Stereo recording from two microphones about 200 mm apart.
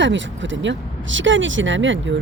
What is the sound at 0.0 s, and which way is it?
Speech, 65° right (ahead or behind).